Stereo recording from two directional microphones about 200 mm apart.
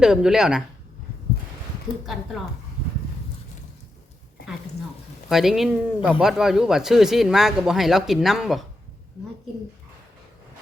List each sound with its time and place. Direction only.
0.0 s speech: 5° right (ahead or behind)
5.3 s speech: centre (ahead or behind)